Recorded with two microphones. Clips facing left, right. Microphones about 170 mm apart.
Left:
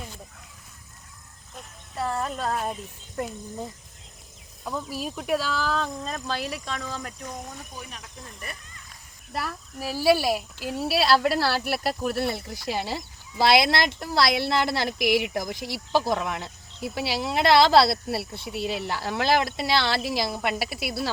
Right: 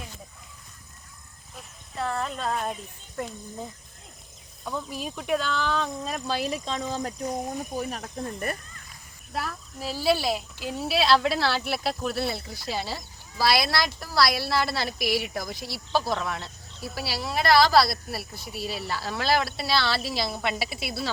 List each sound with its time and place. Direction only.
1.5 s speech: 5° left (ahead or behind)
4.6 s speech: 5° left (ahead or behind)
6.1 s speech: 15° right (ahead or behind); by 7.5 s 30° right (ahead or behind)
7.7 s speech: 45° right (ahead or behind)
9.4 s speech: 10° left (ahead or behind)